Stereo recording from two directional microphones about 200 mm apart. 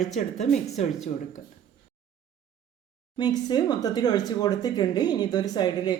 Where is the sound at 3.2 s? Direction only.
20° left (ahead or behind).